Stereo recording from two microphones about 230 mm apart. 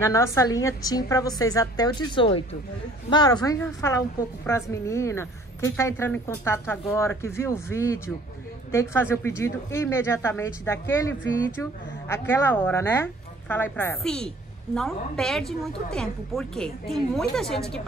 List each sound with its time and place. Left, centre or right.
0.0 s speech: centre